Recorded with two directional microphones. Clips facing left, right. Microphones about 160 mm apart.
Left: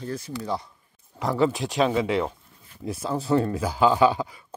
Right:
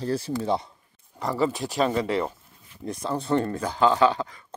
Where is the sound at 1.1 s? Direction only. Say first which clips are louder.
Left 2 dB; centre (ahead or behind).